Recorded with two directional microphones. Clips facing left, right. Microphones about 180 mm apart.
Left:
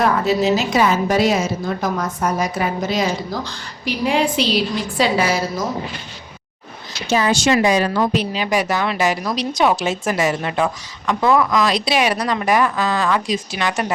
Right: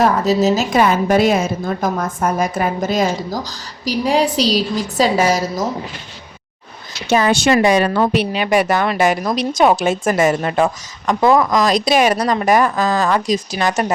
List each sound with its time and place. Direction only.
0.0 s a woman's voice: 40° right (ahead or behind)
7.1 s a woman's voice: 60° right (ahead or behind); by 13.9 s 40° right (ahead or behind)